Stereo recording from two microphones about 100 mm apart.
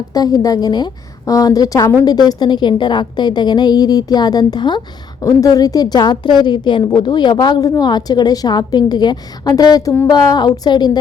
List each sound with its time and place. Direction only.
0.1 s a woman's voice: 40° left (ahead or behind)